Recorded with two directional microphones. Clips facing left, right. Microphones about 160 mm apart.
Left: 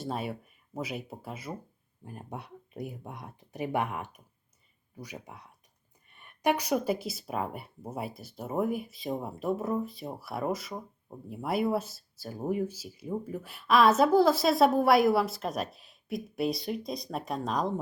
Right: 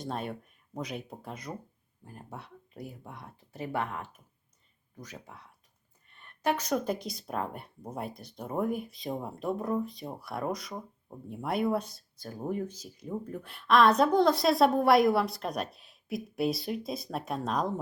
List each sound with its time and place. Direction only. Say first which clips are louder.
0.0 s speech: left 1 dB; 5° left (ahead or behind)
2.0 s speech: left 4 dB; 15° left (ahead or behind); by 17.7 s centre (ahead or behind)